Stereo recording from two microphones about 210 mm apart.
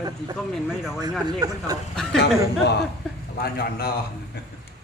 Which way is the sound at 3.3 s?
45° left (ahead or behind).